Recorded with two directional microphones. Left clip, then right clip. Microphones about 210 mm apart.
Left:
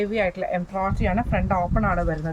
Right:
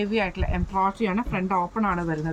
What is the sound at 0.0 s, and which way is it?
A woman's voice, 25° left (ahead or behind).